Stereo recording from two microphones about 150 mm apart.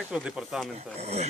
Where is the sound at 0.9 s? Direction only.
45° right (ahead or behind).